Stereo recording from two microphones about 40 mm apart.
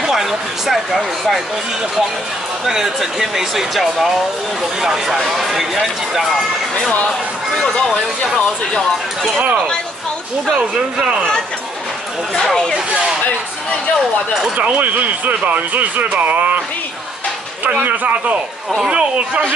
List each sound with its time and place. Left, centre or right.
0.0 s speech: centre
2.6 s speech: centre
6.7 s speech: left
14.6 s speech: right
17.7 s speech: right
18.9 s speech: right